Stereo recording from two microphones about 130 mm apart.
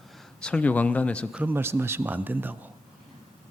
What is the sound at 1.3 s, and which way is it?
Speech, 10° right (ahead or behind).